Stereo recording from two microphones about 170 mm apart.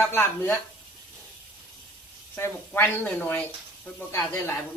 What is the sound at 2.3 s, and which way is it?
A man's voice, 15° left (ahead or behind).